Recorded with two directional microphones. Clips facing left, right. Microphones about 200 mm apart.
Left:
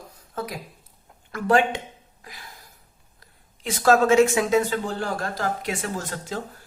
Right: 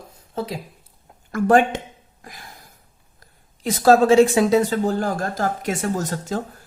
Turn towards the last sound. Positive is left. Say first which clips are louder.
# right 6 dB
turn(degrees=-45)  # may be behind; listen again after turning